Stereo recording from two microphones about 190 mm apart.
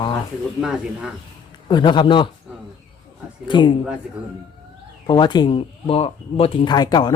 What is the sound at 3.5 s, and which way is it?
Speech, 25° left (ahead or behind).